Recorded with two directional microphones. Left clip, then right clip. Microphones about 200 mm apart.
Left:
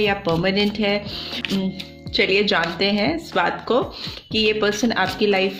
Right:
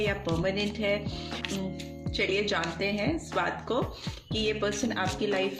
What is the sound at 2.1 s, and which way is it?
Speech, 35° left (ahead or behind).